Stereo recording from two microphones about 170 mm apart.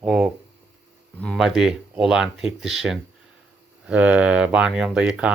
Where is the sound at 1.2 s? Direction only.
Centre (ahead or behind).